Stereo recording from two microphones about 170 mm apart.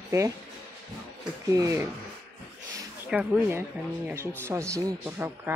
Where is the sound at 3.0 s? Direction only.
5° right (ahead or behind).